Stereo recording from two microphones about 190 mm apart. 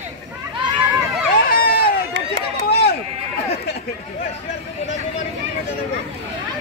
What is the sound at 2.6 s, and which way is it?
Chop, 60° left (ahead or behind).